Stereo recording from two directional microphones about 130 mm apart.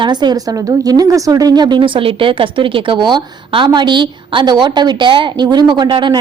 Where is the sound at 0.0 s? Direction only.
35° right (ahead or behind).